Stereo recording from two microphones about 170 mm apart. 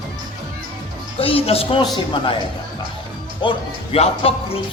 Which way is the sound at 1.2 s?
35° left (ahead or behind).